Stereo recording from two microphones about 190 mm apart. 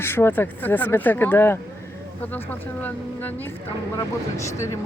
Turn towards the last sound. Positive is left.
turn(degrees=15)  # may be behind; listen again after turning